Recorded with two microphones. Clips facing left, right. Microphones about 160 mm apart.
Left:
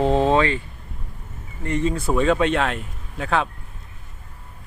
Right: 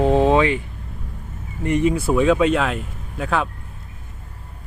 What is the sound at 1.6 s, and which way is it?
Speech, 15° right (ahead or behind).